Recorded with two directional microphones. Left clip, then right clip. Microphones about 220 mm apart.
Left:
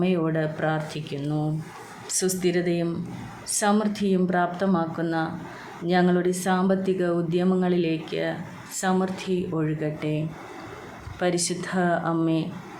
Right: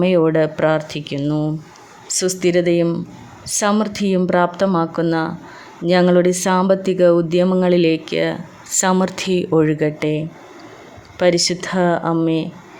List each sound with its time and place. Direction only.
0.0 s speech: 45° right (ahead or behind)